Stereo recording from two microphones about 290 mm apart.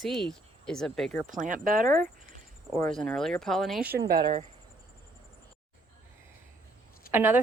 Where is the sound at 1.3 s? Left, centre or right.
Right.